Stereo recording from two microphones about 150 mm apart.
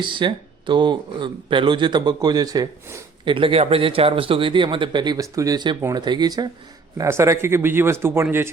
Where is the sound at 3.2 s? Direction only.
35° right (ahead or behind).